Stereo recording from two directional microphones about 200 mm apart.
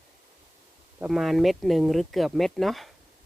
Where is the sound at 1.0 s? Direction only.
Centre (ahead or behind).